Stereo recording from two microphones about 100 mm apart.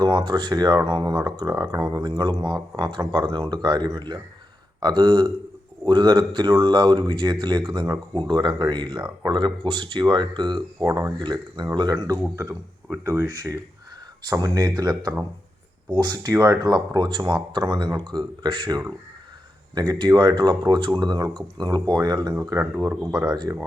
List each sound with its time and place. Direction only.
0.2 s speech: 50° right (ahead or behind)
9.3 s speech: 55° right (ahead or behind)
12.4 s speech: 25° right (ahead or behind)
13.2 s speech: 35° right (ahead or behind); by 18.8 s 55° right (ahead or behind)
19.9 s speech: 45° right (ahead or behind)
22.4 s speech: 35° right (ahead or behind)
23.0 s speech: 10° right (ahead or behind)
23.3 s speech: 40° right (ahead or behind)